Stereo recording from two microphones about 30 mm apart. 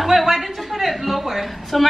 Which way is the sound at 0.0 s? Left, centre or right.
Centre.